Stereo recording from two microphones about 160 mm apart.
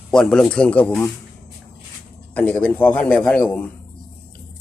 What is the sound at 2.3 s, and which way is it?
A man's voice, 10° left (ahead or behind).